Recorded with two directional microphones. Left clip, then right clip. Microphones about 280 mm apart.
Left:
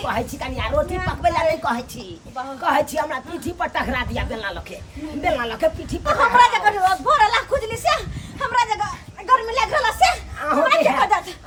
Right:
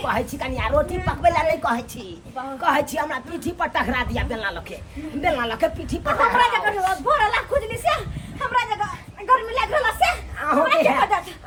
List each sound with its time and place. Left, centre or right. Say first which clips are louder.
0.0 s a woman's voice: even; centre